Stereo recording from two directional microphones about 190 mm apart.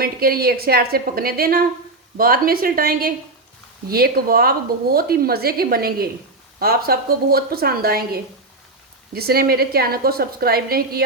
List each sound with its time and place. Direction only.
0.0 s a woman's voice: 50° right (ahead or behind)